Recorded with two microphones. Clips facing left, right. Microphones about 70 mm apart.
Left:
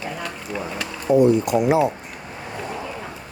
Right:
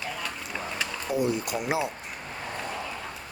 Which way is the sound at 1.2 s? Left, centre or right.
Centre.